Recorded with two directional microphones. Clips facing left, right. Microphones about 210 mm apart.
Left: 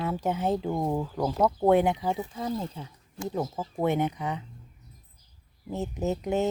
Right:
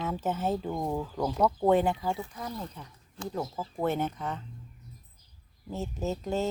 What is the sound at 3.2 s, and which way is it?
Speech, 15° left (ahead or behind).